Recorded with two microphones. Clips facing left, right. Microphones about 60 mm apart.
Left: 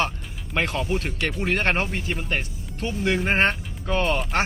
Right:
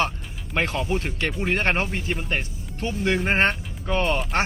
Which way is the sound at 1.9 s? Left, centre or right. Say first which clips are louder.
Even; centre.